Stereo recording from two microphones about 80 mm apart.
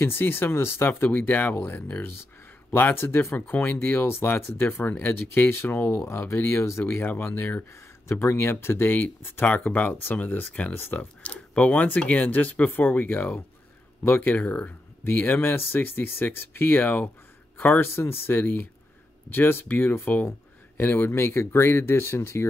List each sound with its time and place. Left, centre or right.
0.0 s speech: left